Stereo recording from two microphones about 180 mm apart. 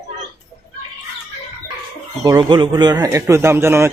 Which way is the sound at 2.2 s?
25° right (ahead or behind).